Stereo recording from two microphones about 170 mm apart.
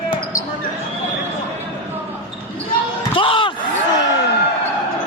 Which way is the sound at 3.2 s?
30° left (ahead or behind).